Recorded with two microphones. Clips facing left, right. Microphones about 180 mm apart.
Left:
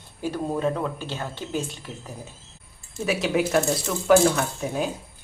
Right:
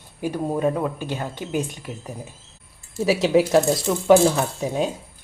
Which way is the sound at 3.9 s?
20° right (ahead or behind).